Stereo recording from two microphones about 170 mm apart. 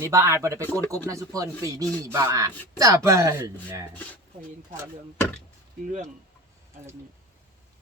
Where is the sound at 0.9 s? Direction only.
20° right (ahead or behind).